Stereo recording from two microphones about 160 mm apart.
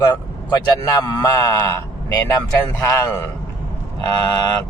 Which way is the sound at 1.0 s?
20° left (ahead or behind).